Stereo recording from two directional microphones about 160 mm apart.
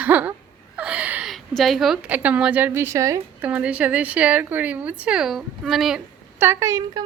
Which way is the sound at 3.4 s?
10° right (ahead or behind).